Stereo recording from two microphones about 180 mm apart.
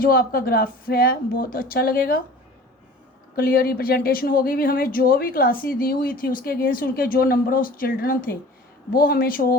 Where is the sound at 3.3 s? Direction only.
55° left (ahead or behind).